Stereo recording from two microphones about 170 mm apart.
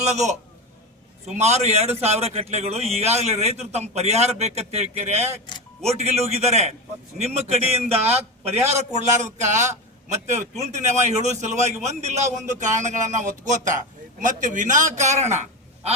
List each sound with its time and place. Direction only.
0.0 s a man's voice: 40° right (ahead or behind)
1.4 s a man's voice: 40° right (ahead or behind)